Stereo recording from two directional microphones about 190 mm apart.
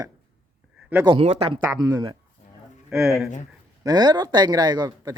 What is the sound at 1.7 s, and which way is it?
Speech, 20° right (ahead or behind).